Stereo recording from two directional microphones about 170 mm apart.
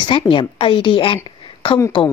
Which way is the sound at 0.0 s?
30° left (ahead or behind).